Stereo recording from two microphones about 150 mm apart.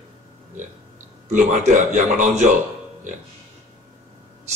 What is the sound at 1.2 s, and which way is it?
A man's voice, 55° right (ahead or behind).